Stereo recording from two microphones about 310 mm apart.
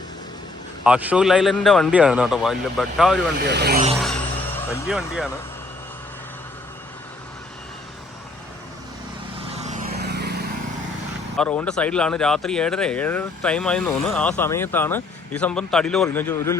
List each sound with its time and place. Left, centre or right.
0.9 s speech: centre
3.3 s speech: right
4.0 s music: centre
9.6 s vehicle: right
11.3 s speech: centre